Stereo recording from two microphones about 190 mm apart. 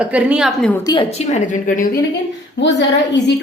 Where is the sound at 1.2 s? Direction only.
40° left (ahead or behind).